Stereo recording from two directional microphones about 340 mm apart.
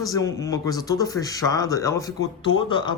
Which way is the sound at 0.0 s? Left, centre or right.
Centre.